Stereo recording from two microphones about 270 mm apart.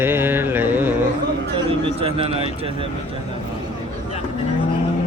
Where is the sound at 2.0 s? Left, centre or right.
Right.